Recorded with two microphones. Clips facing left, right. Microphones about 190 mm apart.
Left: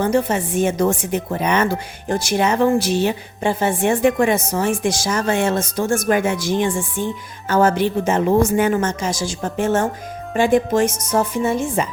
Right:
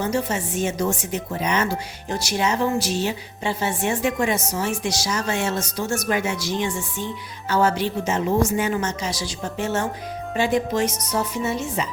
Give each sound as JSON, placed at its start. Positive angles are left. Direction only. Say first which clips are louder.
{"t": 0.0, "sound": "speech", "louder": "left 6 dB", "side_deg": 55}